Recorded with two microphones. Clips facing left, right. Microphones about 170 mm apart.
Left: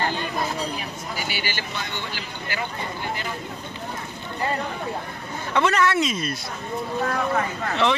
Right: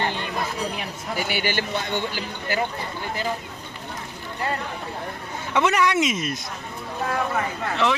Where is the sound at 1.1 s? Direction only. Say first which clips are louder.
Right 7 dB; 55° right (ahead or behind).